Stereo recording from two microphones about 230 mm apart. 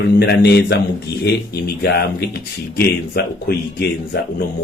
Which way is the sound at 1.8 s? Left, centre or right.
Left.